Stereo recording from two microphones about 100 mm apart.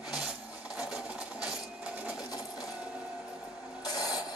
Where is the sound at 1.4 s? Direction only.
10° right (ahead or behind).